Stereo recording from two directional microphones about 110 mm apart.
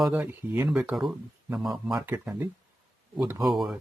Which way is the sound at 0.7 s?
5° right (ahead or behind).